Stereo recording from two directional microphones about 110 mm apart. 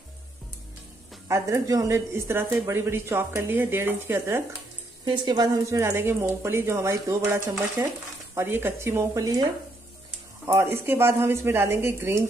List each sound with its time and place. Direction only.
1.3 s speech: 30° right (ahead or behind)
5.0 s speech: 45° right (ahead or behind)
5.7 s speech: 25° right (ahead or behind)
10.4 s speech: 25° right (ahead or behind)